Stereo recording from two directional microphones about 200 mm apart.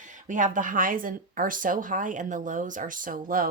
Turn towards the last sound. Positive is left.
turn(degrees=-45)  # may be behind; listen again after turning